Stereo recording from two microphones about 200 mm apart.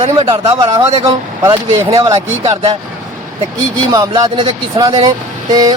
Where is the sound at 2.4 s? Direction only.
30° right (ahead or behind).